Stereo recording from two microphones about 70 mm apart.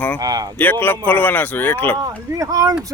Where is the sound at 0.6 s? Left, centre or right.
Left.